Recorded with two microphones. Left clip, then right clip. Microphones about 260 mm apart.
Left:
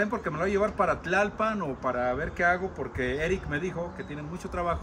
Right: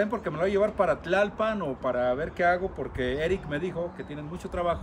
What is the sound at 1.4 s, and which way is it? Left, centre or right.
Speech, centre.